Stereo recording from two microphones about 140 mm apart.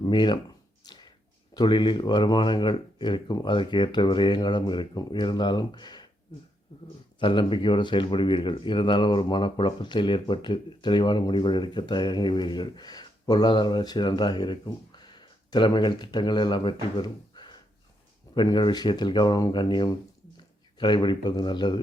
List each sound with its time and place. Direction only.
0.0 s speech: 35° left (ahead or behind)
0.8 s a sound: 30° left (ahead or behind)
1.5 s speech: 35° left (ahead or behind)
7.2 s speech: 35° left (ahead or behind)